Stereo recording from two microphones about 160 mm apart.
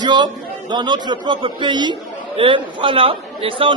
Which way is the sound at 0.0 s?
30° right (ahead or behind).